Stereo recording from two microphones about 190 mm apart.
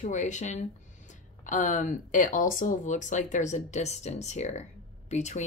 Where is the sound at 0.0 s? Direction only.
40° left (ahead or behind).